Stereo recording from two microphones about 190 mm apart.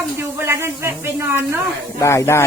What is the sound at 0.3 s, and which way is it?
Speech, 15° right (ahead or behind).